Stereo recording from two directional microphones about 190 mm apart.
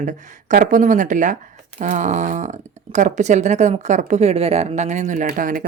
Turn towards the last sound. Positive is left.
turn(degrees=-45)  # may be behind; listen again after turning